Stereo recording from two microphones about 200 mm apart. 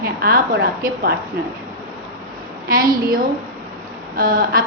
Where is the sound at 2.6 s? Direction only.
45° right (ahead or behind).